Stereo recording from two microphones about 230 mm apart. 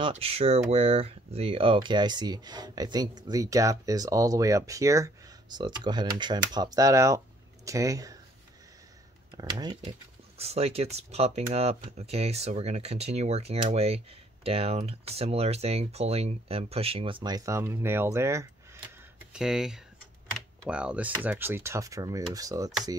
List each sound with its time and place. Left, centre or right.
0.0 s speech: right
9.4 s speech: centre